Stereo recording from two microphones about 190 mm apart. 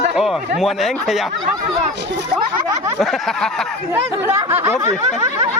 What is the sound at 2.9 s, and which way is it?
Speech, centre (ahead or behind).